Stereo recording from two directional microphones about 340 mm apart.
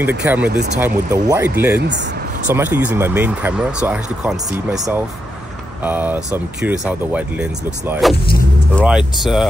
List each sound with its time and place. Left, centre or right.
0.0 s speech: centre
1.8 s speech: right
2.5 s speech: centre